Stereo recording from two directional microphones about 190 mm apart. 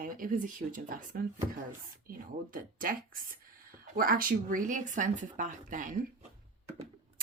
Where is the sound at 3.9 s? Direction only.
50° right (ahead or behind).